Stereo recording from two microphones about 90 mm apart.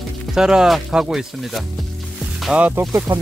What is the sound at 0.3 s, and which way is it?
Speech, 5° right (ahead or behind).